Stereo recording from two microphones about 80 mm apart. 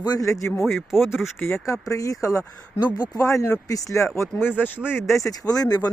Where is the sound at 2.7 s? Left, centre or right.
Left.